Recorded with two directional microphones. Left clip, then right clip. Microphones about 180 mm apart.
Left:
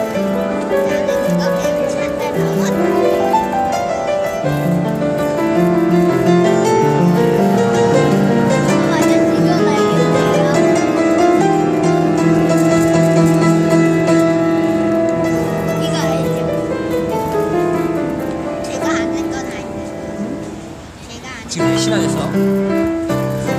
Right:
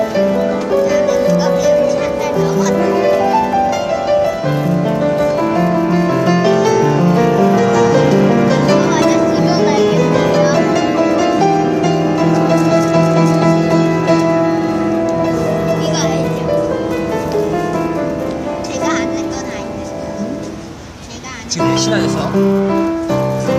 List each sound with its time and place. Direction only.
0.8 s music: 25° left (ahead or behind)
6.3 s music: 20° left (ahead or behind)
12.7 s music: centre (ahead or behind)
21.6 s music: centre (ahead or behind)